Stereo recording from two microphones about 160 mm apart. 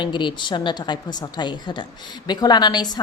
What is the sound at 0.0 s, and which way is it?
A woman's voice, 30° left (ahead or behind).